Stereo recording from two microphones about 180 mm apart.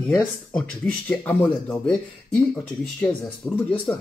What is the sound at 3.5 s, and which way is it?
Speech, 20° left (ahead or behind).